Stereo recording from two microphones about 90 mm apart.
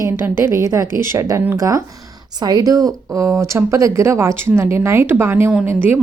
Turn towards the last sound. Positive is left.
turn(degrees=-25)  # may be behind; listen again after turning